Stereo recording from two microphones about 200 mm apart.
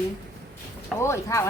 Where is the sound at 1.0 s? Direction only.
15° left (ahead or behind).